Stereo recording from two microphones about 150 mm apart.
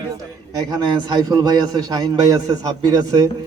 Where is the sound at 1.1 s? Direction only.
30° right (ahead or behind).